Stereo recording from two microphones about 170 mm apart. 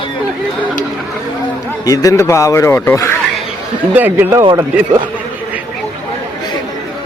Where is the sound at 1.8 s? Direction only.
20° left (ahead or behind).